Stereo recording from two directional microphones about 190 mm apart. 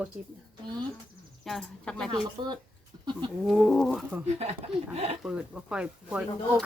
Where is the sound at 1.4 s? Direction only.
Centre (ahead or behind).